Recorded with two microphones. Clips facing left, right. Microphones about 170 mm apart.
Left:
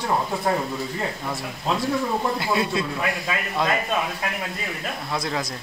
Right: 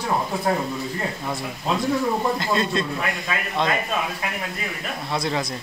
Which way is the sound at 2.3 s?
10° left (ahead or behind).